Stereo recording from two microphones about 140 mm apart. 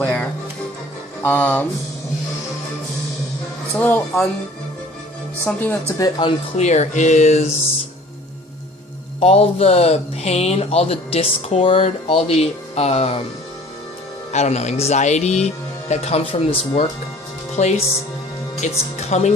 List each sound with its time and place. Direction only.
0.0 s music: 10° left (ahead or behind)
1.2 s speech: 10° left (ahead or behind)
3.8 s speech: 15° left (ahead or behind)
5.5 s speech: 10° left (ahead or behind)
6.0 s speech: 30° left (ahead or behind)
6.6 s speech: 55° left (ahead or behind)
9.2 s speech: 45° left (ahead or behind)
14.3 s speech: 55° left (ahead or behind)
17.6 s speech: 50° left (ahead or behind)